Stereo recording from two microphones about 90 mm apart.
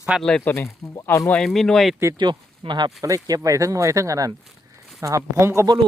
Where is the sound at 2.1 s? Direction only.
60° right (ahead or behind).